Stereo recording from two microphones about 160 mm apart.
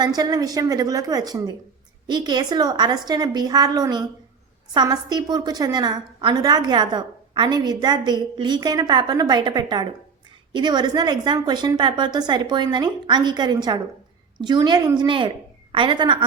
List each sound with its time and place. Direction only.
0.0 s a woman's voice: 25° right (ahead or behind)